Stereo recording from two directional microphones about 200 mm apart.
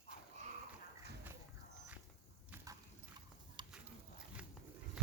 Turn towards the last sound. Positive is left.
turn(degrees=-5)  # may be behind; listen again after turning